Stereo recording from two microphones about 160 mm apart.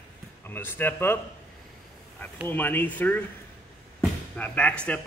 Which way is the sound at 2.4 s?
10° left (ahead or behind).